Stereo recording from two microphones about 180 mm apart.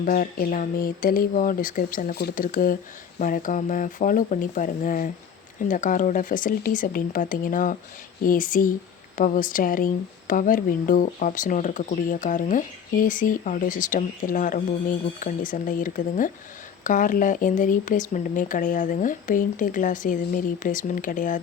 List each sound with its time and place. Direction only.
0.0 s speech: 50° left (ahead or behind)